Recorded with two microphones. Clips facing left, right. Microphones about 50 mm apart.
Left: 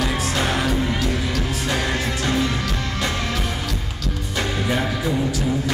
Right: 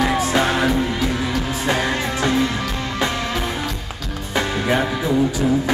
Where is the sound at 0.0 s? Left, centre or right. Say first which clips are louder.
Right 5 dB; right.